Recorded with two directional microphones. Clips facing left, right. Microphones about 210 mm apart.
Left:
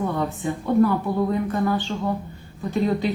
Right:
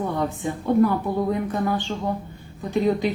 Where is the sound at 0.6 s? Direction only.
15° right (ahead or behind).